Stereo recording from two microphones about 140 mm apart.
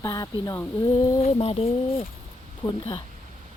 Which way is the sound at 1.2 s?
45° left (ahead or behind).